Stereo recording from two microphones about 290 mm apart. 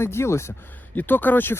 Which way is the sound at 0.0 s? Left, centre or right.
Centre.